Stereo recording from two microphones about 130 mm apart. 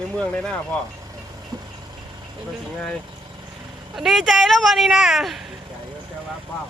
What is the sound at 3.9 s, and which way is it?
Speech, centre (ahead or behind).